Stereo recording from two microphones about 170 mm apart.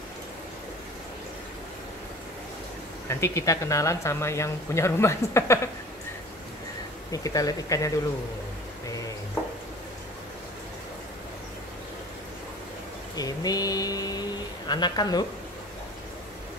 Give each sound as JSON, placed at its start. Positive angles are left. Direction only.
{"t": 3.1, "sound": "speech", "side_deg": 15}
{"t": 7.1, "sound": "speech", "side_deg": 20}
{"t": 13.1, "sound": "a sound", "side_deg": 20}
{"t": 14.7, "sound": "speech", "side_deg": 25}